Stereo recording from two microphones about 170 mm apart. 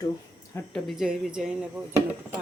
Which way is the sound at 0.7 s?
Centre (ahead or behind).